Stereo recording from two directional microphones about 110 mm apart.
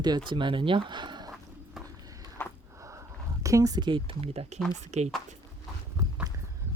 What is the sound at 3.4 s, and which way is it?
Speech, 30° right (ahead or behind).